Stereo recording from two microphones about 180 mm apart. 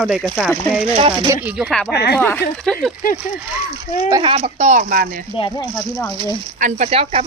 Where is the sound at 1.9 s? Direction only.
65° left (ahead or behind).